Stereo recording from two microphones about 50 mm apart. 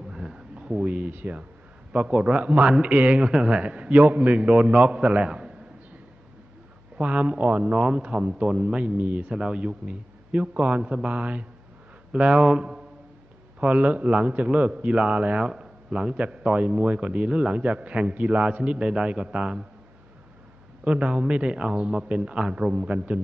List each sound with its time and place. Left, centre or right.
0.1 s a sound: centre
0.6 s a man's voice: right
7.0 s a man's voice: right
9.3 s a man's voice: centre
13.6 s a man's voice: right
20.8 s a man's voice: right